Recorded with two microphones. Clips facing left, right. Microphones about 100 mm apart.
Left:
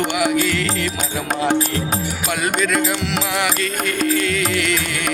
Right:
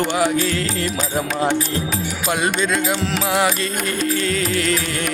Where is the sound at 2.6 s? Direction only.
25° right (ahead or behind).